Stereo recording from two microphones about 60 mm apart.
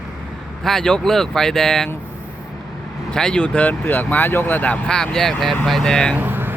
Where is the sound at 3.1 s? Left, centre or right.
Centre.